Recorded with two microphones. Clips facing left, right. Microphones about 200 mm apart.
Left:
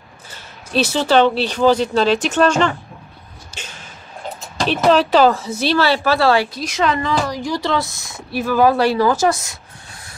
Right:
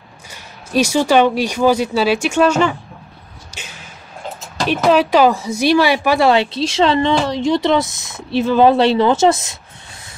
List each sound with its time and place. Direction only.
0.3 s speech: 10° right (ahead or behind)
3.5 s a sound: 10° right (ahead or behind)
4.6 s speech: 5° right (ahead or behind); by 9.6 s 25° right (ahead or behind)